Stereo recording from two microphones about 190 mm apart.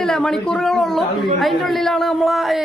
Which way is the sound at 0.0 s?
5° left (ahead or behind).